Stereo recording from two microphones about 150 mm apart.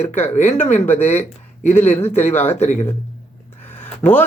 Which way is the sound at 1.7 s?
10° left (ahead or behind).